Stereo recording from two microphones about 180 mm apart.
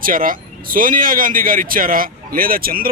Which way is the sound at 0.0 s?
50° right (ahead or behind).